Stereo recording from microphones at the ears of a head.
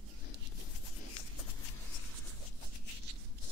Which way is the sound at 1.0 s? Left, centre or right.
Left.